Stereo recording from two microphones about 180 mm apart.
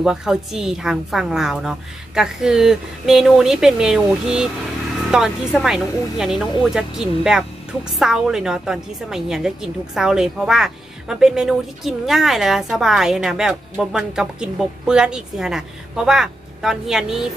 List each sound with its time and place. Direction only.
0.0 s a woman's voice: 5° right (ahead or behind)